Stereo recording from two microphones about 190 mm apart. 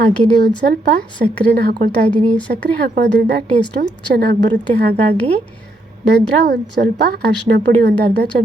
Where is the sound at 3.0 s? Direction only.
60° right (ahead or behind).